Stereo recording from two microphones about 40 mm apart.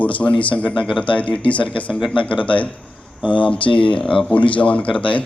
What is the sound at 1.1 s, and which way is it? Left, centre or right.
Speech, left.